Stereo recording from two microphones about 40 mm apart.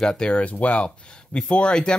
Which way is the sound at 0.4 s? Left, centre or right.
Left.